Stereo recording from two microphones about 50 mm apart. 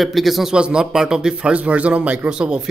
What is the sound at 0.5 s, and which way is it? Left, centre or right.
A man's voice, centre.